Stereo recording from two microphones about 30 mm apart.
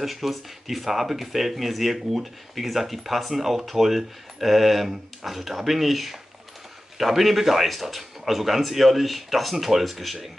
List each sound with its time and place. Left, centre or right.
0.0 s speech: centre